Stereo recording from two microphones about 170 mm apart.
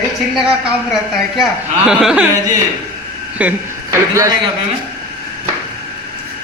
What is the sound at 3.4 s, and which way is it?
Speech, 15° right (ahead or behind).